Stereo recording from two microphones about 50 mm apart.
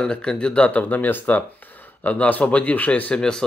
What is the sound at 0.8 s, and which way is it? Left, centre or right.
Speech, left.